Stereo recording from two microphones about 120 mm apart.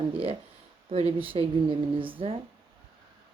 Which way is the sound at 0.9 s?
55° right (ahead or behind).